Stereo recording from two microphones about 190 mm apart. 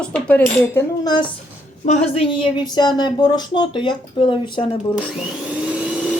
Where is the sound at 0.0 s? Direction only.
5° left (ahead or behind).